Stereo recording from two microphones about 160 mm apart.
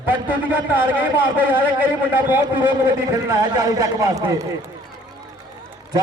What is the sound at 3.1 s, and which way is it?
A man's voice, 20° right (ahead or behind).